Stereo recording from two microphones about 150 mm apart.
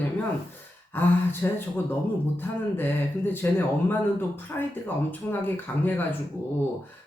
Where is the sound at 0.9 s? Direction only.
15° left (ahead or behind).